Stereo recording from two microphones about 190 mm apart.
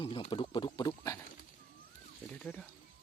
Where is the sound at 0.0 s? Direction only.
30° left (ahead or behind).